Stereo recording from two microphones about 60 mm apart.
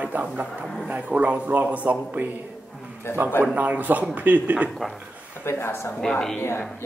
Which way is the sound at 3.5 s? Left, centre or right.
Right.